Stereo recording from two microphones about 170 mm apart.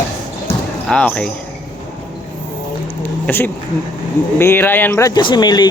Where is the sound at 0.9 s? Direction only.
5° left (ahead or behind).